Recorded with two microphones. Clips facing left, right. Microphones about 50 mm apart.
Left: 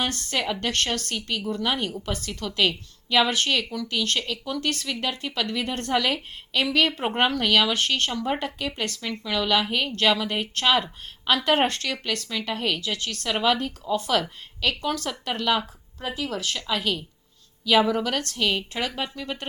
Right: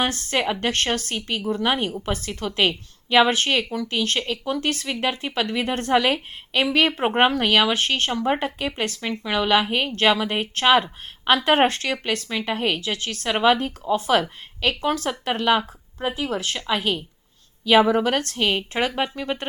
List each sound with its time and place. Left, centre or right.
0.0 s a woman's voice: right